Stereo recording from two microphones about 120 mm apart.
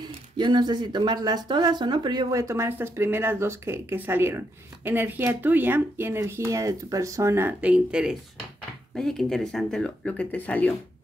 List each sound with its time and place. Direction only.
0.0 s speech: 40° right (ahead or behind); by 10.7 s 15° left (ahead or behind)